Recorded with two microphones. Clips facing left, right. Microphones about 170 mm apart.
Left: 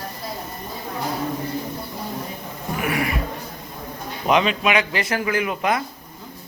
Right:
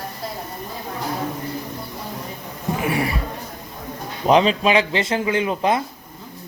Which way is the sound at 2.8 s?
30° right (ahead or behind).